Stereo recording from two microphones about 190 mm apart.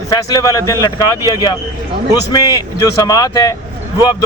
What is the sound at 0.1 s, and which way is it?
Speech, 20° left (ahead or behind).